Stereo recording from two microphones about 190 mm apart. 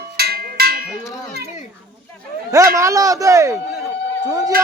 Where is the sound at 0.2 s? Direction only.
55° right (ahead or behind).